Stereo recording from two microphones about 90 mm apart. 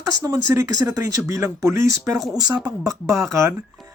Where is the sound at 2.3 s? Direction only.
45° right (ahead or behind).